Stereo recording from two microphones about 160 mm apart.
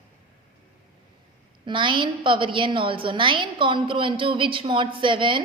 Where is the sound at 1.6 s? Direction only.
30° right (ahead or behind).